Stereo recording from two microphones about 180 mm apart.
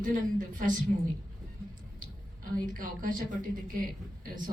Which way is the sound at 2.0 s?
50° right (ahead or behind).